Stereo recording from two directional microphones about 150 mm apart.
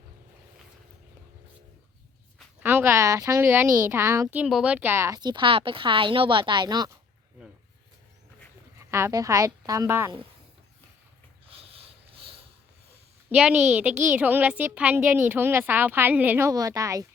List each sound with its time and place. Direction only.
2.6 s a woman's voice: 15° right (ahead or behind)
8.8 s speech: 20° right (ahead or behind)
11.5 s snort: 40° right (ahead or behind)
13.3 s a woman's voice: 5° right (ahead or behind)
16.5 s speech: 25° right (ahead or behind)